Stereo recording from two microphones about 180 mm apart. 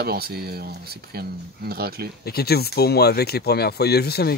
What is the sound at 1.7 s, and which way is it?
Speech, 60° right (ahead or behind).